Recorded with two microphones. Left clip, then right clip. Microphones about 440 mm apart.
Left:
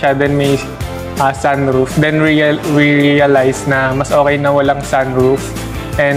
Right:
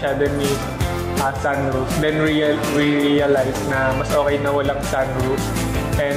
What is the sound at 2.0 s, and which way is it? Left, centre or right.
Speech, left.